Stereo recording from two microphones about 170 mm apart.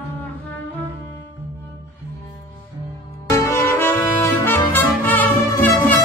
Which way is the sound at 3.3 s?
15° left (ahead or behind).